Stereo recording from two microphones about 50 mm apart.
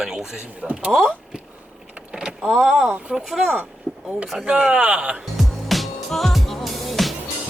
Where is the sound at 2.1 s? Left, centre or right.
Centre.